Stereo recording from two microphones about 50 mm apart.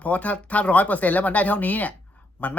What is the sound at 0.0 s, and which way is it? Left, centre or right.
Speech, left.